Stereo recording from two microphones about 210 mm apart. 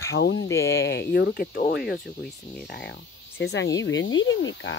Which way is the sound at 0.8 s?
50° left (ahead or behind).